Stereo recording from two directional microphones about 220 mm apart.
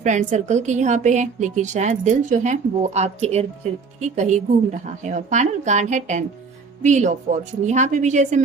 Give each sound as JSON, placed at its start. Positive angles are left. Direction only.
{"t": 0.0, "sound": "a woman's voice", "side_deg": -35}